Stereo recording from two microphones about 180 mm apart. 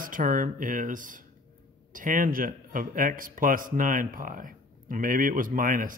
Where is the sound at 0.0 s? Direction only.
50° right (ahead or behind).